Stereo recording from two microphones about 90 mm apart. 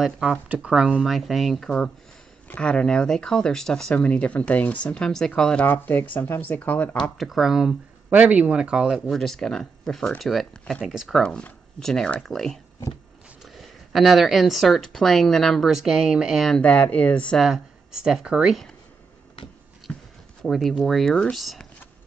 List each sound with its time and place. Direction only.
0.0 s speech: 10° right (ahead or behind); by 7.0 s 20° left (ahead or behind)
7.2 s speech: centre (ahead or behind)
8.1 s speech: 15° right (ahead or behind)
11.2 s speech: 10° left (ahead or behind); by 16.4 s 5° right (ahead or behind)
16.4 s speech: 10° left (ahead or behind)
17.4 s speech: 5° right (ahead or behind)
19.9 s a sound: 15° left (ahead or behind)
20.4 s speech: centre (ahead or behind)